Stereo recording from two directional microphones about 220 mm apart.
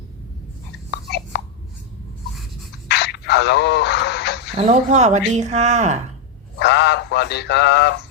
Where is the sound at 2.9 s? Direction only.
50° left (ahead or behind).